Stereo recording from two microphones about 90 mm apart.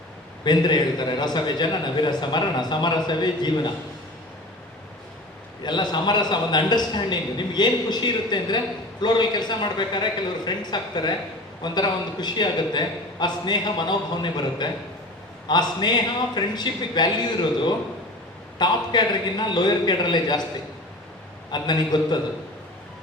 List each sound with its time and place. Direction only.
0.4 s a man's voice: 55° left (ahead or behind)
5.6 s a man's voice: 55° left (ahead or behind)
21.5 s a man's voice: 55° left (ahead or behind)